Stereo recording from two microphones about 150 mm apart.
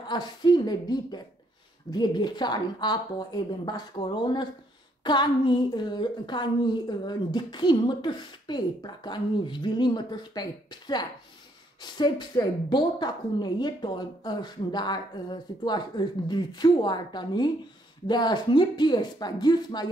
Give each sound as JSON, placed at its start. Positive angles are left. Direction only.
{"t": 0.0, "sound": "a woman's voice", "side_deg": 30}